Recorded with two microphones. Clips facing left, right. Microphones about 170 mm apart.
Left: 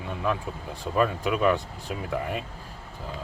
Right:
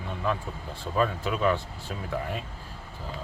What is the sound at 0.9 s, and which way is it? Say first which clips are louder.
Speech: left 2 dB; 10° left (ahead or behind).